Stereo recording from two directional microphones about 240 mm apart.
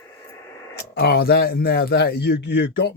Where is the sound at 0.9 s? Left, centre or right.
Left.